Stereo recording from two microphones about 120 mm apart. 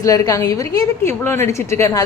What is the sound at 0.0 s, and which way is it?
A woman's voice, 30° left (ahead or behind).